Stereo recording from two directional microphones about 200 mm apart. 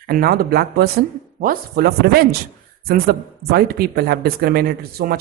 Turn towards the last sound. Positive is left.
turn(degrees=-50)  # may be behind; listen again after turning